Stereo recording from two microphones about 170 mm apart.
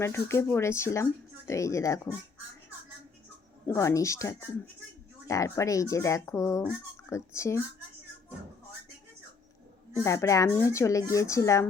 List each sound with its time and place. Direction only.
0.0 s speech: 15° left (ahead or behind)
3.7 s speech: 20° left (ahead or behind)
10.0 s speech: 15° left (ahead or behind)